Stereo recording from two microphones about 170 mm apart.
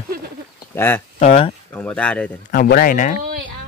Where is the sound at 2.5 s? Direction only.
60° left (ahead or behind).